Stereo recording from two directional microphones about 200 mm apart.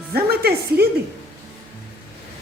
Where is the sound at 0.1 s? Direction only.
50° right (ahead or behind).